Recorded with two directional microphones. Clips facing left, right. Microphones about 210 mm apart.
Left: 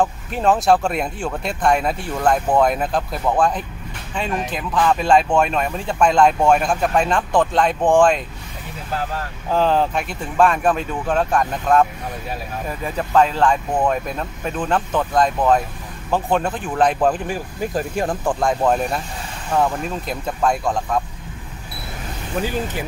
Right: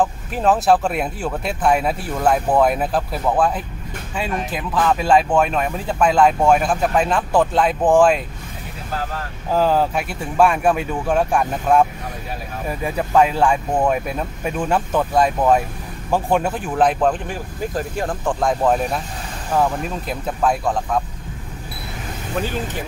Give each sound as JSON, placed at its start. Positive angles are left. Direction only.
{"t": 0.0, "sound": "speech", "side_deg": 0}
{"t": 9.5, "sound": "speech", "side_deg": -5}
{"t": 18.2, "sound": "speech", "side_deg": 0}